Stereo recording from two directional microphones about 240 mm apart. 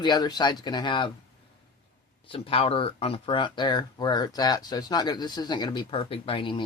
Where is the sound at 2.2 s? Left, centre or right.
Left.